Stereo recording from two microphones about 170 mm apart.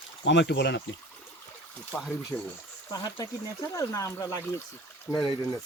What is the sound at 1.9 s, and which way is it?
Speech, 10° left (ahead or behind).